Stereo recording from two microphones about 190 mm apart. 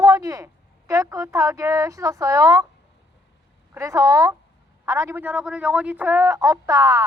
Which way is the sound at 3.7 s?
15° right (ahead or behind).